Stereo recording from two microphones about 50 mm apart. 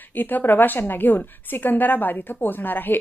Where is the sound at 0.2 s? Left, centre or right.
Left.